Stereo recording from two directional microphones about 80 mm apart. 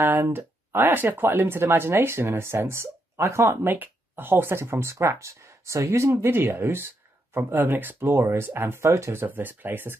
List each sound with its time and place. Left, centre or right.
0.0 s speech: right
3.6 s speech: right
9.2 s speech: right